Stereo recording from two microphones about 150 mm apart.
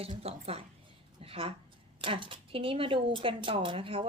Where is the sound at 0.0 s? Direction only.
40° right (ahead or behind).